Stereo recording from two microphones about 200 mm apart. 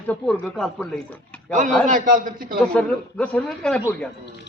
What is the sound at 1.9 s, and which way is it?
Speech, 40° right (ahead or behind).